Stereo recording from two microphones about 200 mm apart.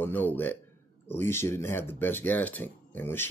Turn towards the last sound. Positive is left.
turn(degrees=10)  # may be behind; listen again after turning